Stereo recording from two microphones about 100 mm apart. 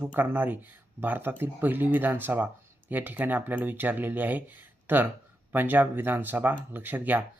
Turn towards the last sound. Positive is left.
turn(degrees=-15)  # may be behind; listen again after turning